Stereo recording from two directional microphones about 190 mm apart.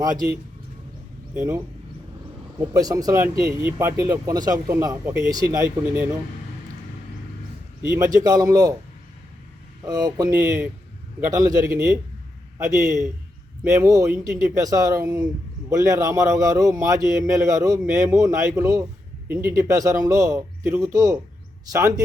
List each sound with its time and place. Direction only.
2.6 s speech: 20° right (ahead or behind)
7.8 s a man's voice: 20° right (ahead or behind)
9.8 s speech: 20° right (ahead or behind)